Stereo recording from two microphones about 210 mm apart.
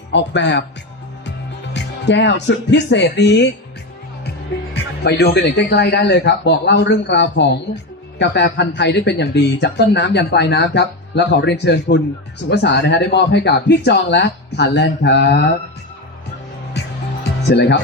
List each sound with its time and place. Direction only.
0.1 s speech: 55° left (ahead or behind)
1.7 s speech: 55° left (ahead or behind)
4.7 s speech: 50° left (ahead or behind)
17.5 s speech: 55° left (ahead or behind)